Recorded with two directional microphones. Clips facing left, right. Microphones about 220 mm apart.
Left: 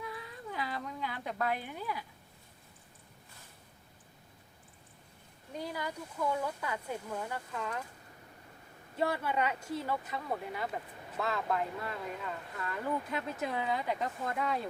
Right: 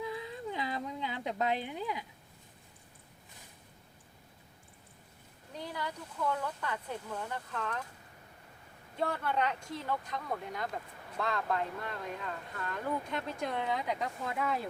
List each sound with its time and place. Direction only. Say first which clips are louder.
0.0 s a sound: right 5 dB; 25° right (ahead or behind)
5.5 s speech: left 2 dB; 10° left (ahead or behind)
9.0 s speech: left 1 dB; 10° left (ahead or behind)